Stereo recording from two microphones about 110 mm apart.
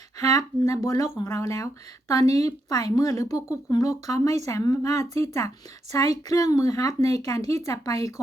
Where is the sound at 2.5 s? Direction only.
35° left (ahead or behind).